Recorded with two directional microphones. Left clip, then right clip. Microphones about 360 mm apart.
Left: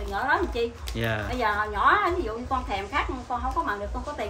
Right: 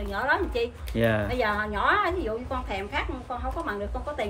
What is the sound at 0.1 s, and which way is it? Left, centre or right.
Speech, centre.